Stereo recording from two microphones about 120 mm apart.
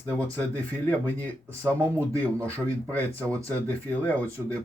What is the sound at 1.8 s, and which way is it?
Speech, 20° right (ahead or behind).